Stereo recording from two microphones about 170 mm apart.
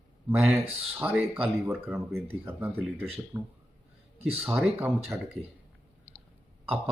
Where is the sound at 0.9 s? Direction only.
10° right (ahead or behind).